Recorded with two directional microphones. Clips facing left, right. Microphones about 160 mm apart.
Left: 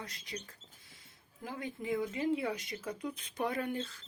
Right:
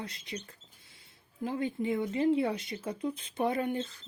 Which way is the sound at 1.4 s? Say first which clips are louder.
Right 7 dB; 30° right (ahead or behind).